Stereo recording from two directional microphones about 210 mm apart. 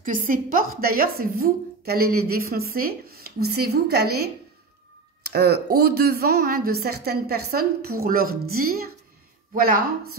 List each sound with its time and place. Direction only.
0.0 s a woman's voice: 40° right (ahead or behind)